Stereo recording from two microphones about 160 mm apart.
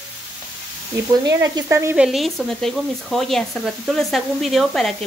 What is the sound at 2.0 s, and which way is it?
Speech, centre (ahead or behind).